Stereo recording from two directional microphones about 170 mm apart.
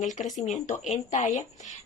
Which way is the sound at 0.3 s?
45° left (ahead or behind).